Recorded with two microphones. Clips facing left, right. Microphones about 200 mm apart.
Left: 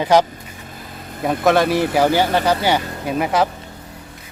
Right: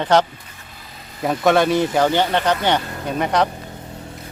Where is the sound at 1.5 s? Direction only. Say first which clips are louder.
Even; centre (ahead or behind).